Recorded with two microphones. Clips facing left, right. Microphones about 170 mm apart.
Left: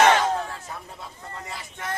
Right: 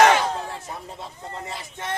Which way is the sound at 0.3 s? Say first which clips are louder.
Left 1 dB; 25° right (ahead or behind).